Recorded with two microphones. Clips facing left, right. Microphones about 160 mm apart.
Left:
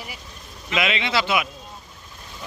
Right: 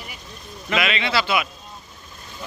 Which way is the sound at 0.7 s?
20° left (ahead or behind).